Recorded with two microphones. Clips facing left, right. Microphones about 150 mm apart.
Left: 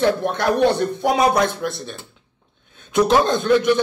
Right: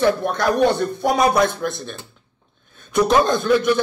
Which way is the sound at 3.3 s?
20° left (ahead or behind).